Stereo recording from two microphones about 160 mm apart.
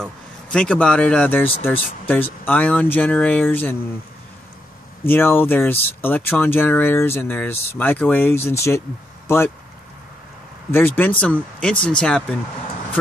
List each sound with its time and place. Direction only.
0.5 s speech: 5° left (ahead or behind)
5.0 s speech: 15° left (ahead or behind)
10.7 s speech: 15° left (ahead or behind)